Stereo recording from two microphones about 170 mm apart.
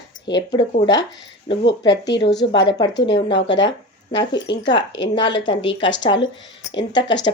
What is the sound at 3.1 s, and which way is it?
A woman's voice, 90° left.